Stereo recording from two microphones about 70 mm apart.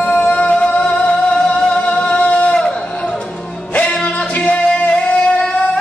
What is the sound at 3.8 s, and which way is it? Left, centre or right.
Music, centre.